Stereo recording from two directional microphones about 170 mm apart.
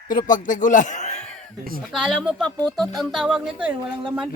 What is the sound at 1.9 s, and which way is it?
Speech, centre (ahead or behind).